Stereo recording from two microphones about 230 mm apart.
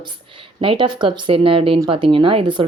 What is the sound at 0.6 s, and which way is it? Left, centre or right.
Speech, right.